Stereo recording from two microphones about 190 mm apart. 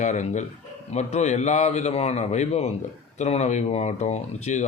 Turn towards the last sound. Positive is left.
turn(degrees=35)  # may be behind; listen again after turning